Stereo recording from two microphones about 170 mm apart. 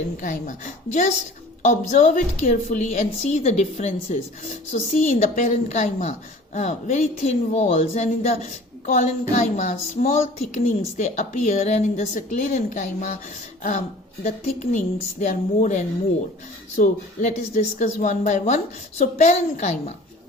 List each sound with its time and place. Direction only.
0.2 s a woman's voice: 50° left (ahead or behind)
14.3 s a woman's voice: 40° left (ahead or behind)